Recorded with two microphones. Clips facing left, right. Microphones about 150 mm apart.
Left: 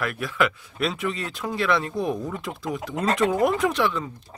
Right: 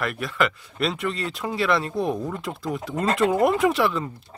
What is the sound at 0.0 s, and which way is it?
Speech, centre (ahead or behind).